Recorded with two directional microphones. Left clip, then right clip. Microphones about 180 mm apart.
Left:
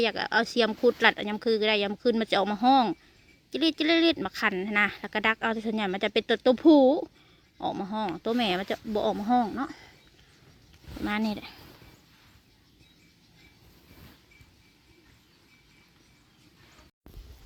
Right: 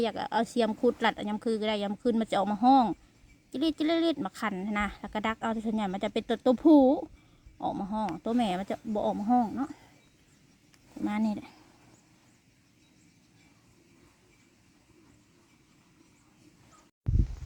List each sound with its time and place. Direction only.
0.0 s speech: 5° right (ahead or behind)
11.0 s speech: 5° left (ahead or behind)